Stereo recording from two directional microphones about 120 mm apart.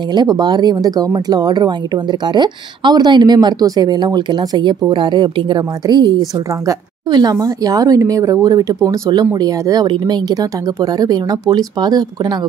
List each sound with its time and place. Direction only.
0.1 s speech: 35° right (ahead or behind)